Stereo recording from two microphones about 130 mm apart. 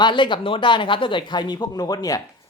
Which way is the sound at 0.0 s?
40° left (ahead or behind).